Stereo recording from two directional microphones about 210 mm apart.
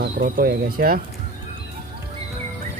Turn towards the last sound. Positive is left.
turn(degrees=-45)  # may be behind; listen again after turning